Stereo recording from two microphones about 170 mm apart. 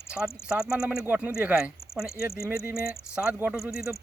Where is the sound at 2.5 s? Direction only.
65° left (ahead or behind).